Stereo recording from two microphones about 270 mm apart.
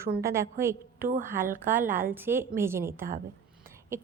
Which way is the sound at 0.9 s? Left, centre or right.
Right.